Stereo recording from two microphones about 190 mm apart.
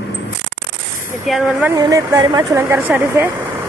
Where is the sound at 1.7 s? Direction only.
20° right (ahead or behind).